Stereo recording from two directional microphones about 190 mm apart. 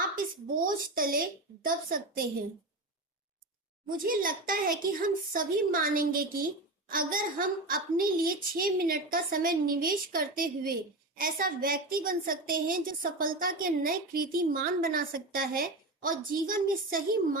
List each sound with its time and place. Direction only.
0.6 s a woman's voice: 50° right (ahead or behind)
3.8 s a woman's voice: 50° right (ahead or behind)